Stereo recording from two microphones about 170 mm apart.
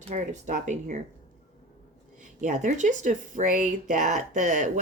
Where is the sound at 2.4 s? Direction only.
45° right (ahead or behind).